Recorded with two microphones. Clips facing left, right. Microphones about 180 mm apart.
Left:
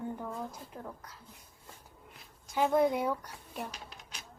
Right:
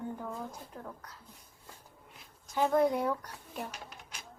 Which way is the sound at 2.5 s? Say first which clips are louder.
Even; 5° left (ahead or behind).